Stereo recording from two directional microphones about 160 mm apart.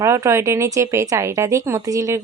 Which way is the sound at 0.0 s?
20° right (ahead or behind).